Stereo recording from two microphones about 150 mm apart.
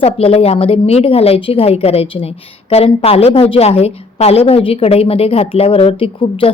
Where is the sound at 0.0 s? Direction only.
40° left (ahead or behind).